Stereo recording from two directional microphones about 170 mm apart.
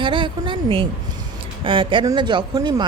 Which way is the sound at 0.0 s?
30° right (ahead or behind).